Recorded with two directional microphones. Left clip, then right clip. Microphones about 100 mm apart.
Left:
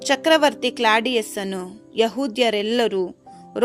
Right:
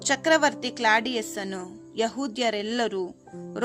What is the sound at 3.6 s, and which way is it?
Music, 25° left (ahead or behind).